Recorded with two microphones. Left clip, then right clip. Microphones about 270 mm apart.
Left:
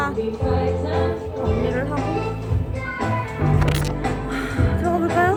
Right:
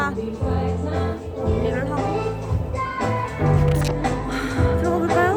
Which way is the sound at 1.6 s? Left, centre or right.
Centre.